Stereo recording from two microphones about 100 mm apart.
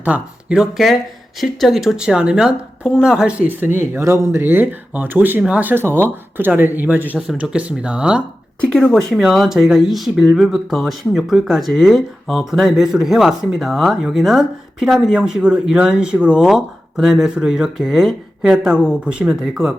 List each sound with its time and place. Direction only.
0.0 s speech: 10° right (ahead or behind)
8.7 s speech: 5° left (ahead or behind)